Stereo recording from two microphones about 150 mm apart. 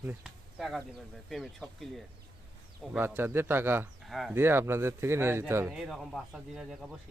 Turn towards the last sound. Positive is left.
turn(degrees=-5)  # may be behind; listen again after turning